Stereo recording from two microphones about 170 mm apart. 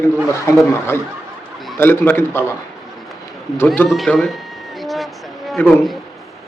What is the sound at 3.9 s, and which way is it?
Speech, centre (ahead or behind).